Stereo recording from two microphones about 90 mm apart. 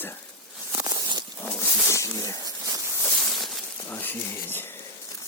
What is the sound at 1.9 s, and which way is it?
Speech, 30° left (ahead or behind).